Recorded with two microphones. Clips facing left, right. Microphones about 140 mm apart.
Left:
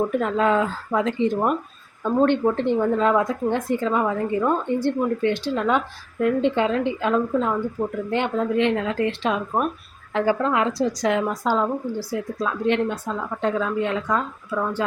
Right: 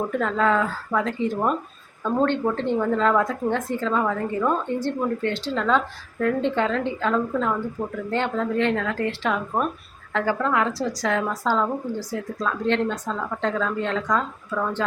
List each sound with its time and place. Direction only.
0.1 s a woman's voice: 15° left (ahead or behind)